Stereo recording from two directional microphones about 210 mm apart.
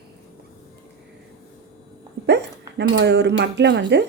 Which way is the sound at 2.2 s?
55° right (ahead or behind).